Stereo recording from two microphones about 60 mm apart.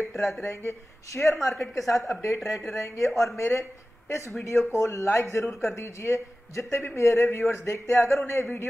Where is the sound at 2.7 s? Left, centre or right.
Left.